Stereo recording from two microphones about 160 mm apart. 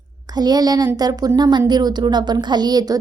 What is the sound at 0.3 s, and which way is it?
Speech, 25° right (ahead or behind).